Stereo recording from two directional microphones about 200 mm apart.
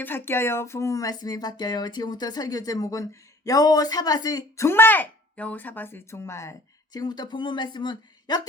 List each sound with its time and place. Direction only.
0.0 s speech: 10° left (ahead or behind)